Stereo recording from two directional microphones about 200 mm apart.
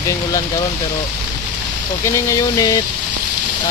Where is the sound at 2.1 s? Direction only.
15° left (ahead or behind).